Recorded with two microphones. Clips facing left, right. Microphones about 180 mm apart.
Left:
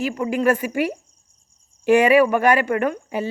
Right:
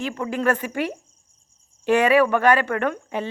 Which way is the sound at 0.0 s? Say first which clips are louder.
Left 3 dB; 10° left (ahead or behind).